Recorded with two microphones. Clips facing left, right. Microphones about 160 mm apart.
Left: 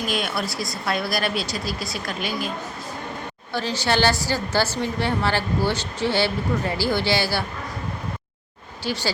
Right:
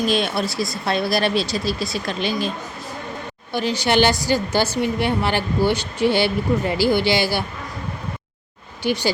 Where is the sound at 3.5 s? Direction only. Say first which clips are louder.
Right 4 dB; 15° right (ahead or behind).